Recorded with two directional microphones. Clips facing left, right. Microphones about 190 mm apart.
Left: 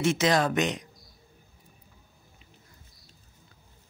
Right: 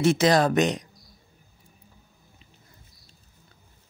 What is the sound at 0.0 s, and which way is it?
Speech, 35° right (ahead or behind).